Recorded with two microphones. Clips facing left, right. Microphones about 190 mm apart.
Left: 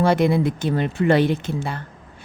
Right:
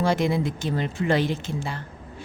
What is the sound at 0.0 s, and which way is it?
A woman's voice, 60° left (ahead or behind).